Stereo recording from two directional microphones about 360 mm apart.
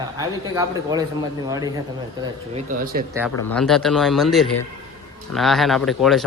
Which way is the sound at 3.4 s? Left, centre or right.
Centre.